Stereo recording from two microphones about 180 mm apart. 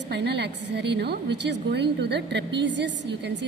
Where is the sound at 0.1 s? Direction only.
70° right (ahead or behind).